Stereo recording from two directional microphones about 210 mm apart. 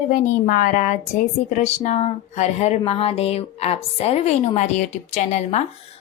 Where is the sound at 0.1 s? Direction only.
40° left (ahead or behind).